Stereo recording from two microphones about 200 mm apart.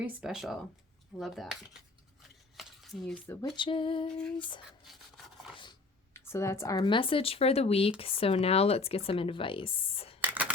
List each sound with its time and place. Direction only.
0.0 s speech: 5° right (ahead or behind)
2.6 s dishes: centre (ahead or behind)
3.5 s speech: 25° left (ahead or behind)
6.1 s speech: 15° left (ahead or behind); by 10.2 s 30° left (ahead or behind)
10.2 s a sound: 5° right (ahead or behind)